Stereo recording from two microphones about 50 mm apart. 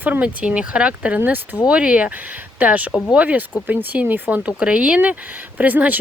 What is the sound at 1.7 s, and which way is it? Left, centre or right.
Speech, right.